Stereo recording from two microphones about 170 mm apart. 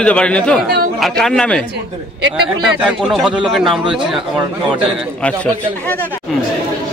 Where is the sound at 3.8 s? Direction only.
30° right (ahead or behind).